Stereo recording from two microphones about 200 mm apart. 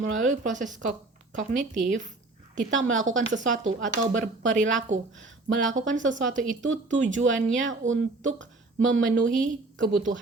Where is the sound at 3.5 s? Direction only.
70° right (ahead or behind).